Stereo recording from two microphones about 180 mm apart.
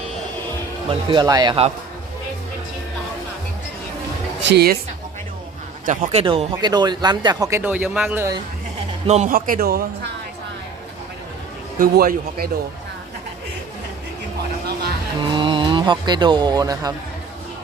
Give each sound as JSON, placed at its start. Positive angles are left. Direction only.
{"t": 0.9, "sound": "speech", "side_deg": -25}
{"t": 4.4, "sound": "a man's voice", "side_deg": -60}
{"t": 5.8, "sound": "speech", "side_deg": -45}
{"t": 7.6, "sound": "speech", "side_deg": -10}
{"t": 9.0, "sound": "speech", "side_deg": -40}
{"t": 9.3, "sound": "a man's voice", "side_deg": -55}
{"t": 11.8, "sound": "a man's voice", "side_deg": -55}
{"t": 15.3, "sound": "music", "side_deg": -25}